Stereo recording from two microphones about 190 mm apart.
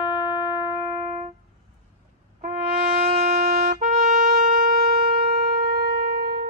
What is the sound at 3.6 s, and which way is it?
Shofar, 40° right (ahead or behind).